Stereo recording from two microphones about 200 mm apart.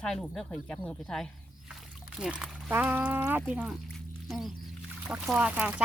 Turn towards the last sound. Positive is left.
turn(degrees=-5)  # may be behind; listen again after turning